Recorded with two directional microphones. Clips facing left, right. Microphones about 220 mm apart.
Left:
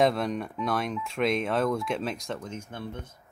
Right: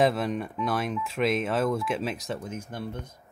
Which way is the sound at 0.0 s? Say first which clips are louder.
Even; 5° right (ahead or behind).